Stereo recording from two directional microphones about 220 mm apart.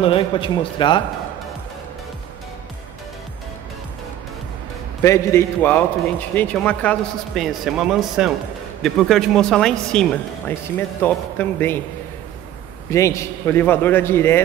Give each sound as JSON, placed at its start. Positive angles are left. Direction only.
{"t": 0.0, "sound": "speech", "side_deg": 25}
{"t": 5.0, "sound": "a man's voice", "side_deg": 15}
{"t": 12.9, "sound": "a man's voice", "side_deg": 15}